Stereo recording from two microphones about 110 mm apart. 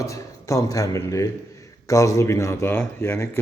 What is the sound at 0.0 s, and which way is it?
A man's voice, 30° left (ahead or behind).